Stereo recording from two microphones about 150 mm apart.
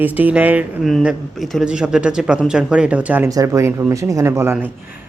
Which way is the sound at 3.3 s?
20° right (ahead or behind).